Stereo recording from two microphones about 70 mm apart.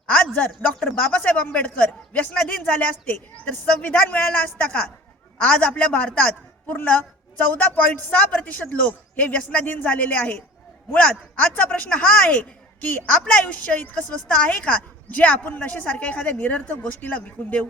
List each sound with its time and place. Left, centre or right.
0.1 s a man's voice: centre